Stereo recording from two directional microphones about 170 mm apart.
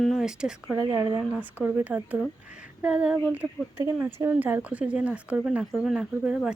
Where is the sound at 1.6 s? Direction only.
10° right (ahead or behind).